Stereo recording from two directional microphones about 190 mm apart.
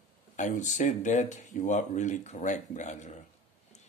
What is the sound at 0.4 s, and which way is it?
Speech, 40° left (ahead or behind).